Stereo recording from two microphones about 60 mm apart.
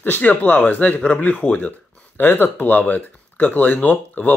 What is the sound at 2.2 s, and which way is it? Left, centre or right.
Speech, left.